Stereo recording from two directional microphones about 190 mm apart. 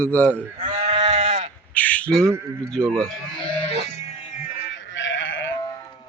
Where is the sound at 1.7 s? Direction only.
5° left (ahead or behind).